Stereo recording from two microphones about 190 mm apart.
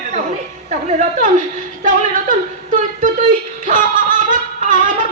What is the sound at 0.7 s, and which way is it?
Speech, 40° right (ahead or behind).